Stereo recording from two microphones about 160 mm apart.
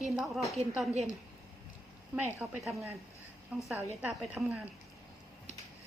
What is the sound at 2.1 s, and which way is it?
A woman's voice, 10° right (ahead or behind).